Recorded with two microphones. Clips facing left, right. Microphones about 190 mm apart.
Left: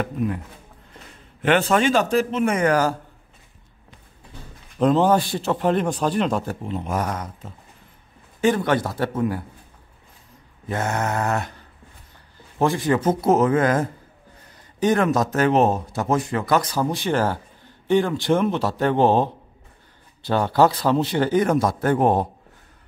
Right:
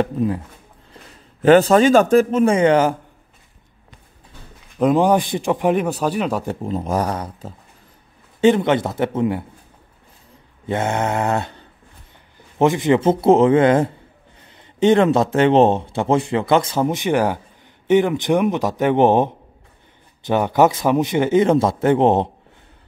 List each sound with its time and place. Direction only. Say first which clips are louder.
0.0 s speech: right 5 dB; 30° right (ahead or behind)
1.4 s a man's voice: right 7 dB; 35° right (ahead or behind)
2.4 s speech: right 5 dB; 25° right (ahead or behind)
4.7 s a man's voice: right 2 dB; 10° right (ahead or behind)
6.6 s a man's voice: right 4 dB; 40° right (ahead or behind)
8.4 s speech: right 5 dB; 25° right (ahead or behind)
10.7 s speech: right 4 dB; 25° right (ahead or behind)